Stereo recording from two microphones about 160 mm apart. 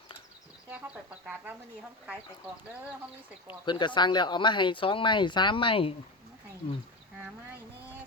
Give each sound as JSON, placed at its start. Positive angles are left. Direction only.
{"t": 3.4, "sound": "speech", "side_deg": 30}